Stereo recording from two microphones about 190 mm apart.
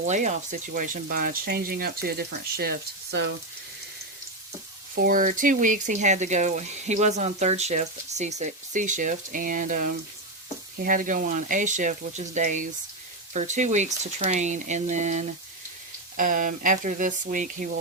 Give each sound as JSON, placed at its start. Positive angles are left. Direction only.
{"t": 0.0, "sound": "speech", "side_deg": -40}
{"t": 3.1, "sound": "frying", "side_deg": -65}
{"t": 4.9, "sound": "speech", "side_deg": -45}